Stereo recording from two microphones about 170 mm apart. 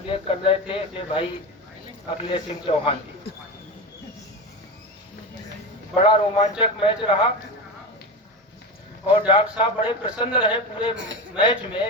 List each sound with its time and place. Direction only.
0.1 s a man's voice: 35° left (ahead or behind)
5.9 s a man's voice: 30° left (ahead or behind)
9.0 s a man's voice: 30° left (ahead or behind)
10.9 s a man's voice: 90° right
11.3 s a man's voice: 30° left (ahead or behind)